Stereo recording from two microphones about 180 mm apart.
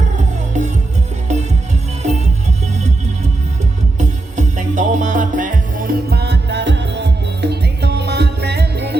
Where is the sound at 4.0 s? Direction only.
40° right (ahead or behind).